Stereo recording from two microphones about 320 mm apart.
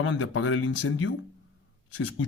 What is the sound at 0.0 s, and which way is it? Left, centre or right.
Speech, left.